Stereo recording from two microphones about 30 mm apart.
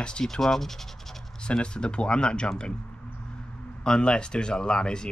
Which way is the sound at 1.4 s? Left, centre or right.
Left.